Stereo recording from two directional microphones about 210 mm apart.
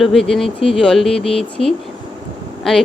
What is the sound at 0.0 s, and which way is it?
Speech, centre (ahead or behind).